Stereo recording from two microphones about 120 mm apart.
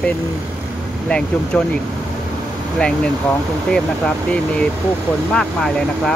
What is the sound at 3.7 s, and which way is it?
Speech, 5° left (ahead or behind).